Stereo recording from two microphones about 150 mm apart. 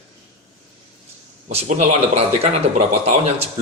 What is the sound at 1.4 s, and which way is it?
Speech, 50° right (ahead or behind).